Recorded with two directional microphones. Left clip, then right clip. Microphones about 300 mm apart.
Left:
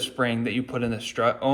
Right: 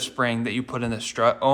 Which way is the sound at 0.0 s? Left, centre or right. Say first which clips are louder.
Right 1 dB; centre.